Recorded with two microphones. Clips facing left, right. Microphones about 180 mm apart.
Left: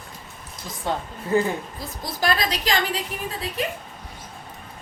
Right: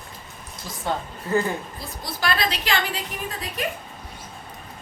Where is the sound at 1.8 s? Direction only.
40° left (ahead or behind).